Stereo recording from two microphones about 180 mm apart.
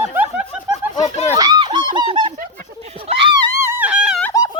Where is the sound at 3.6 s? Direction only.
10° right (ahead or behind).